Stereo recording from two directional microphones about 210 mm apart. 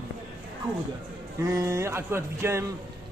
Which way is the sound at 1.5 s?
15° right (ahead or behind).